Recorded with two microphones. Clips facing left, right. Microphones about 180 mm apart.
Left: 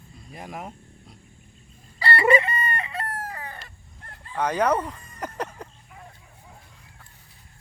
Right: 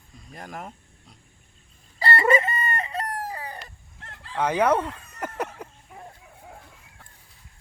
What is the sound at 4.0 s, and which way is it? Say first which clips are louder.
Crowing: right 1 dB; 90° right.